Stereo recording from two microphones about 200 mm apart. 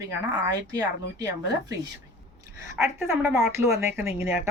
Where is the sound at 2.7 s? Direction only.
10° right (ahead or behind).